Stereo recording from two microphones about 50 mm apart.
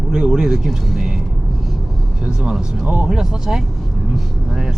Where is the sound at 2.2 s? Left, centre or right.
Centre.